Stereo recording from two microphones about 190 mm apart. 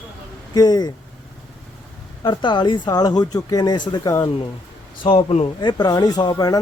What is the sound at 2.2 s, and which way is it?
Speech, 25° left (ahead or behind).